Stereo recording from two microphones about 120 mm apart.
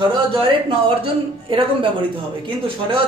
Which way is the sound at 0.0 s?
45° right (ahead or behind).